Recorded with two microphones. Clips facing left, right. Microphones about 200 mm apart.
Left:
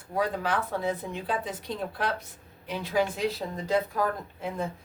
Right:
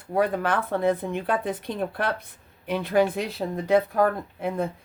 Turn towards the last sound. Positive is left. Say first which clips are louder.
# right 5 dB
turn(degrees=-60)  # may be behind; listen again after turning